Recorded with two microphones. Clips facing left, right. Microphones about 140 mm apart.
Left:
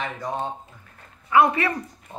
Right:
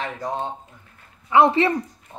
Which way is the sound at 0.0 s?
25° right (ahead or behind).